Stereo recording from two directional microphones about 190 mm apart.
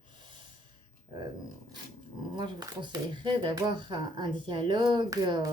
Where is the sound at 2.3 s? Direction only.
25° right (ahead or behind).